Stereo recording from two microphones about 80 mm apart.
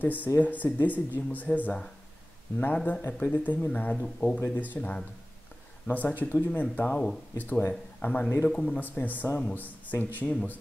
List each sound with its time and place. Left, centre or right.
0.0 s speech: left
3.9 s speech: centre
4.4 s speech: left